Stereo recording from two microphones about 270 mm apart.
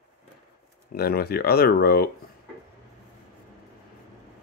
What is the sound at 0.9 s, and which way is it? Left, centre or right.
Speech, left.